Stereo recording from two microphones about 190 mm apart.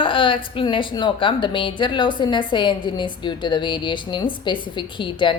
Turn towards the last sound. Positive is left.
turn(degrees=25)  # may be behind; listen again after turning